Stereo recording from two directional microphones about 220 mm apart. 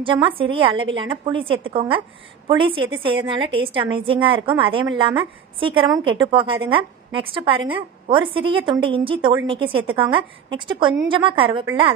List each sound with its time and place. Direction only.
0.0 s a woman's voice: 25° right (ahead or behind)